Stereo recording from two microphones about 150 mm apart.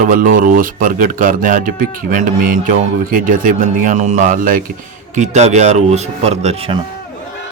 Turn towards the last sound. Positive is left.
turn(degrees=-40)  # may be behind; listen again after turning